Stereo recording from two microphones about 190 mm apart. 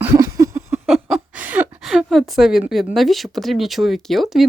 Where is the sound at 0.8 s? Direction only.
Centre (ahead or behind).